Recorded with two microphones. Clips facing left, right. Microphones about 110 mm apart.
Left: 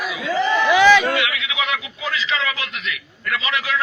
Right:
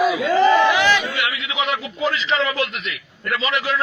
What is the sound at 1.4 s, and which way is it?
A man's voice, 35° right (ahead or behind).